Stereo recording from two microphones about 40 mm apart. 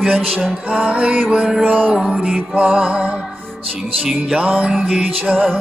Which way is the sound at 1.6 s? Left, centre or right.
Right.